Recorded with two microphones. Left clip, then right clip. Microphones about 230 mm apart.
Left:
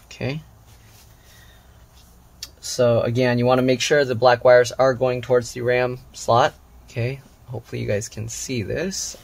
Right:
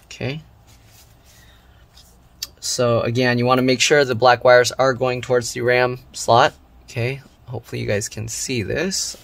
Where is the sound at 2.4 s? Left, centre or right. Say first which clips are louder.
Left 1 dB; right.